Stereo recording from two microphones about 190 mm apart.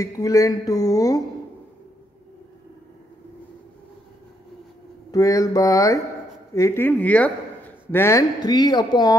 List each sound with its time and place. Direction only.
0.0 s speech: 20° left (ahead or behind)
5.1 s speech: 20° left (ahead or behind)